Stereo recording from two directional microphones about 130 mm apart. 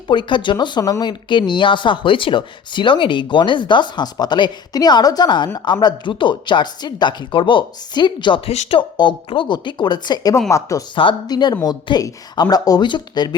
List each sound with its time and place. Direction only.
0.1 s speech: 35° left (ahead or behind)
10.9 s speech: 35° left (ahead or behind)